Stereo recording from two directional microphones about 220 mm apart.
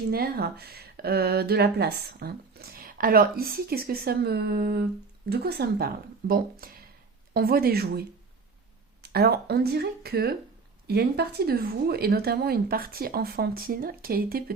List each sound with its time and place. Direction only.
0.1 s speech: 45° right (ahead or behind)
9.0 s speech: 45° right (ahead or behind)